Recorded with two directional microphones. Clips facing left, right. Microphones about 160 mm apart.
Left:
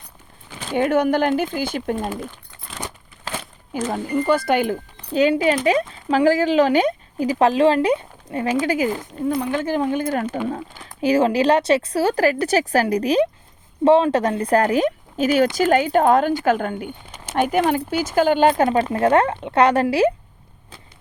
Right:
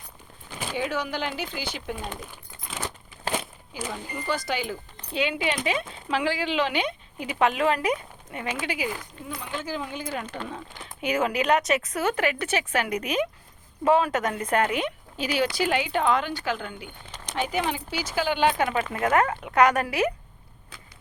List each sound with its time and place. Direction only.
0.8 s speech: 55° left (ahead or behind)
3.2 s crumpling: 15° right (ahead or behind)
3.8 s speech: 50° left (ahead or behind)
5.1 s speech: 40° left (ahead or behind)
8.6 s speech: 40° left (ahead or behind)
9.3 s speech: 60° left (ahead or behind)
10.2 s speech: 10° left (ahead or behind)
11.0 s speech: 30° left (ahead or behind)